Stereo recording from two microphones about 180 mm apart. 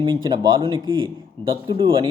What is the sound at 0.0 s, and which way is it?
Speech, 25° right (ahead or behind).